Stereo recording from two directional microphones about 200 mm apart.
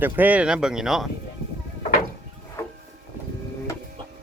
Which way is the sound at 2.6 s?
15° left (ahead or behind).